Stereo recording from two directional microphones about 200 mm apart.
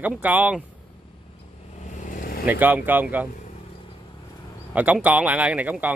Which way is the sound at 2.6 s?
10° right (ahead or behind).